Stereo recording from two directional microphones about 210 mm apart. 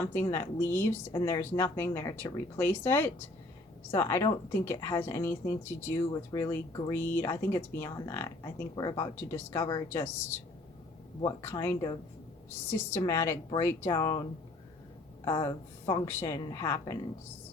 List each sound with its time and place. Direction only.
0.3 s speech: 15° left (ahead or behind)